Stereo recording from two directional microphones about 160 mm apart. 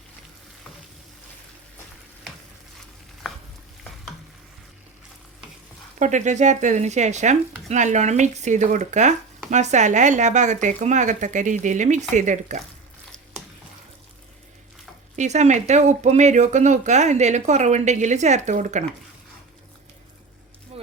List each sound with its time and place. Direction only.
6.0 s speech: 50° right (ahead or behind)
15.1 s speech: 45° right (ahead or behind)
20.7 s a sound: 40° right (ahead or behind)